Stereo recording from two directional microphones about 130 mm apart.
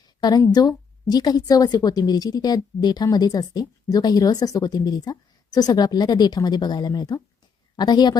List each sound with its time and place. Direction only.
0.2 s a woman's voice: 30° left (ahead or behind)